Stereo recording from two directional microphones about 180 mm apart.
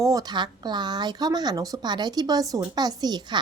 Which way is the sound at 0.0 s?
20° right (ahead or behind).